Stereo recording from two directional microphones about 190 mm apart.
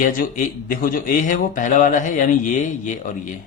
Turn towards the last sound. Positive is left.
turn(degrees=45)  # may be behind; listen again after turning